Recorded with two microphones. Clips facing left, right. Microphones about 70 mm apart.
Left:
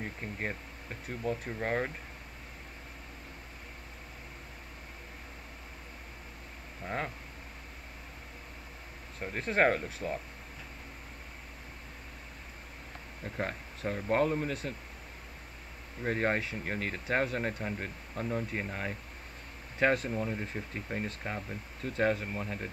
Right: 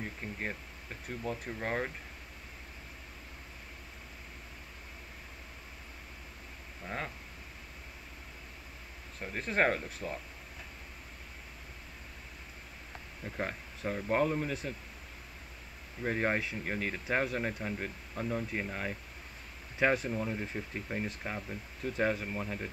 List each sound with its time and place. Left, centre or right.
0.0 s speech: centre
6.8 s speech: left
9.2 s speech: centre
13.2 s speech: centre
16.0 s speech: centre
17.6 s speech: centre
19.8 s speech: centre
20.1 s speech: centre